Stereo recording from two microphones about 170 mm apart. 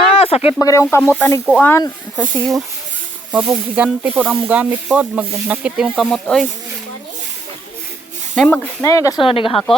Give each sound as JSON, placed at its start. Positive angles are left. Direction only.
{"t": 0.0, "sound": "a sound", "side_deg": 35}
{"t": 0.6, "sound": "speech", "side_deg": 15}
{"t": 2.3, "sound": "speech", "side_deg": 0}
{"t": 8.4, "sound": "speech", "side_deg": 5}
{"t": 8.8, "sound": "speech", "side_deg": 20}
{"t": 9.2, "sound": "speech", "side_deg": 30}